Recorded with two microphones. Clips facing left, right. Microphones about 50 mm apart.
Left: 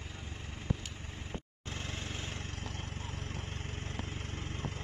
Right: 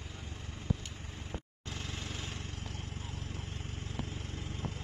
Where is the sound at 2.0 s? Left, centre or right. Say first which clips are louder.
Left 1 dB; left.